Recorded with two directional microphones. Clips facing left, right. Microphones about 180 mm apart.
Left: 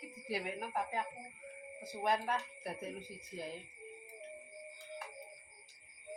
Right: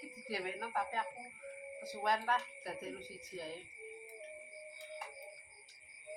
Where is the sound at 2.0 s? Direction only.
15° left (ahead or behind).